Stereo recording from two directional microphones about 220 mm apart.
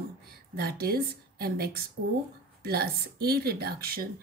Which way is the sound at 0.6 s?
45° right (ahead or behind).